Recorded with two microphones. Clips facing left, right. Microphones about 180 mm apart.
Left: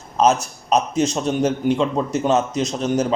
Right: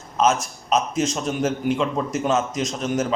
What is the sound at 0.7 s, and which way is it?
A man's voice, 35° left (ahead or behind).